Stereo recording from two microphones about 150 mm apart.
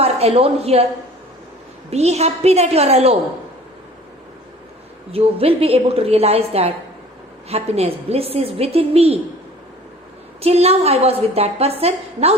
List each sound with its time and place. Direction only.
0.0 s a woman's voice: 45° right (ahead or behind)
1.9 s a woman's voice: 45° right (ahead or behind)
5.1 s a woman's voice: 40° right (ahead or behind)
10.4 s a woman's voice: 45° right (ahead or behind)